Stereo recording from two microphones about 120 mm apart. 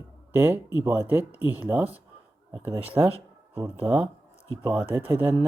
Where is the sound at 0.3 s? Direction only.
20° right (ahead or behind).